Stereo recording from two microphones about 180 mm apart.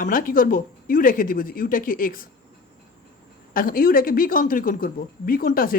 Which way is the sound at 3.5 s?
55° left (ahead or behind).